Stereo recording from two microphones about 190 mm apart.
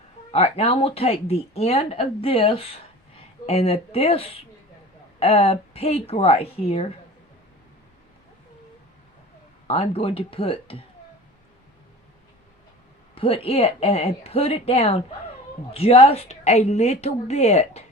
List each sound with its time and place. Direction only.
0.3 s speech: 35° left (ahead or behind)
9.6 s speech: 30° left (ahead or behind)
13.1 s speech: 30° left (ahead or behind)